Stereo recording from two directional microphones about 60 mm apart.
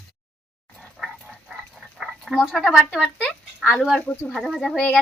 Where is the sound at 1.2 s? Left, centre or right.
Centre.